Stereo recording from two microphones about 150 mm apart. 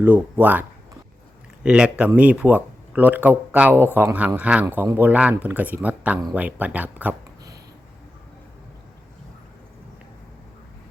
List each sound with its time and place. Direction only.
0.0 s speech: 10° right (ahead or behind)
1.6 s speech: 5° right (ahead or behind)